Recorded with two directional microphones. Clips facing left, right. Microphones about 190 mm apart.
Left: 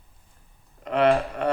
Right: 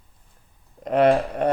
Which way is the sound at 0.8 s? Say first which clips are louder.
Right 3 dB; 45° right (ahead or behind).